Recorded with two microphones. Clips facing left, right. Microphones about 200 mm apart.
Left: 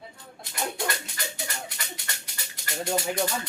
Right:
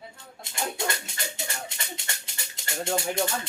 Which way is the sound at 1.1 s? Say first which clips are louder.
Even; 25° right (ahead or behind).